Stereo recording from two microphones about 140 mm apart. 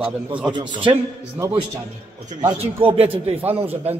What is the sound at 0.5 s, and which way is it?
Speech, 35° right (ahead or behind).